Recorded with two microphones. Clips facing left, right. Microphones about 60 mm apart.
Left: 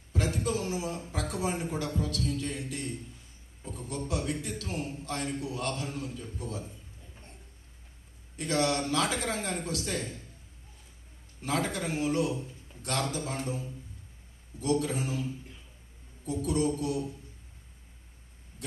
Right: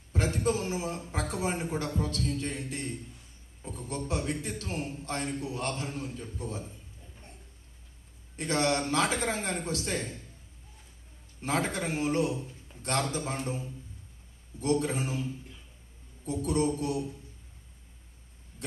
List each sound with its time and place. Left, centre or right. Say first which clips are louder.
0.1 s a sound: right 2 dB; right
1.1 s a man's voice: right 1 dB; right
8.4 s a man's voice: even; right
11.4 s a man's voice: right 1 dB; right
12.4 s a sound: even; centre
12.8 s a man's voice: right 2 dB; right
16.3 s a man's voice: even; right